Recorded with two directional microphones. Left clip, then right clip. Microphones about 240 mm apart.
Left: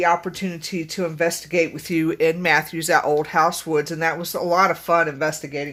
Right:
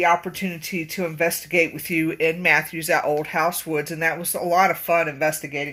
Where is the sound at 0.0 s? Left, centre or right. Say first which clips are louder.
Even; centre.